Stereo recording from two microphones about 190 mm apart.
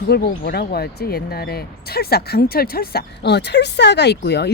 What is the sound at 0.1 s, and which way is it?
Speech, 55° left (ahead or behind).